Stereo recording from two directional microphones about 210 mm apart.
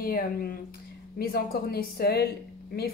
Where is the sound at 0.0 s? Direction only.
45° left (ahead or behind).